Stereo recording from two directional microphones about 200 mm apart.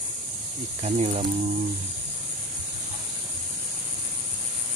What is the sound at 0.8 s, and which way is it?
Speech, 35° right (ahead or behind).